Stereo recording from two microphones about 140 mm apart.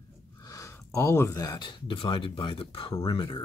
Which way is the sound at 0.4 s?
25° left (ahead or behind).